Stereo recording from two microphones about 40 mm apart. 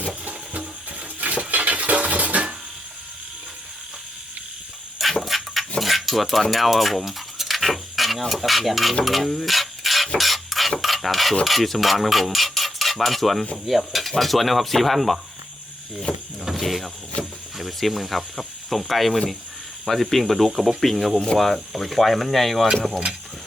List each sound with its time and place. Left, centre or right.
0.3 s a sound: right
1.2 s cutlery: right
5.2 s dog: centre
5.8 s a sound: centre
6.4 s speech: centre
10.2 s mechanisms: centre
11.4 s stir: centre
13.7 s speech: centre
16.4 s speech: centre
18.3 s snake: centre
19.8 s speech: centre
22.7 s speech: centre